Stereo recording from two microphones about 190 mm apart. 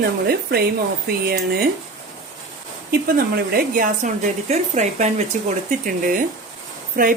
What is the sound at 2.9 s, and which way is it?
Speech, 55° right (ahead or behind).